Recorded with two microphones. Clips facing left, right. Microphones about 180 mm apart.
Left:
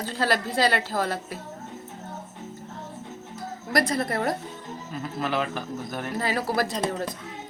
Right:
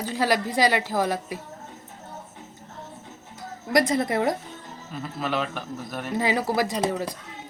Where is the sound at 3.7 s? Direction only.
20° right (ahead or behind).